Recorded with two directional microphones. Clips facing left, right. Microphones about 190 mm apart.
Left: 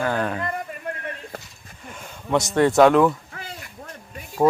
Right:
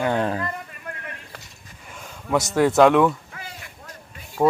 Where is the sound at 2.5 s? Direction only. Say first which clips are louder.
Even; 5° right (ahead or behind).